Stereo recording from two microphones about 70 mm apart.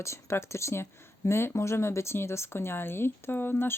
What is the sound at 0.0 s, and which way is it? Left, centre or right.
Speech, left.